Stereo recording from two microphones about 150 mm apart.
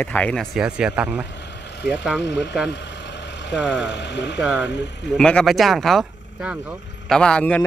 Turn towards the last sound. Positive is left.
turn(degrees=10)  # may be behind; listen again after turning